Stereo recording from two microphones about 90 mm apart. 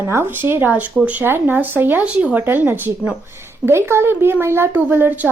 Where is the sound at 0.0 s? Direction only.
30° right (ahead or behind).